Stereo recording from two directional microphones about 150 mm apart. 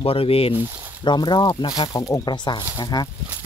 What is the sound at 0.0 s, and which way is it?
Speech, 40° left (ahead or behind).